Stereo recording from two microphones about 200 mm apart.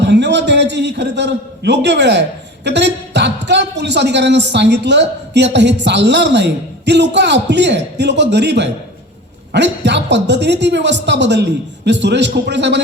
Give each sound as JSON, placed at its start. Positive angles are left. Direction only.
{"t": 0.0, "sound": "a man's voice", "side_deg": -60}